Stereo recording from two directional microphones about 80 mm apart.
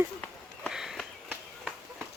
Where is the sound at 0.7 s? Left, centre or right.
Centre.